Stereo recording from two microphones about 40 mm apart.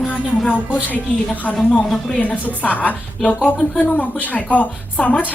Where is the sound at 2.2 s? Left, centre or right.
Left.